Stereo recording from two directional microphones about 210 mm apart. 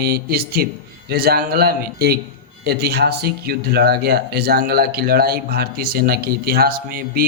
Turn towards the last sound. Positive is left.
turn(degrees=-45)  # may be behind; listen again after turning